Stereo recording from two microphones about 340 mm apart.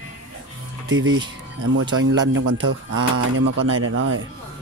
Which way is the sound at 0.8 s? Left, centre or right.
Right.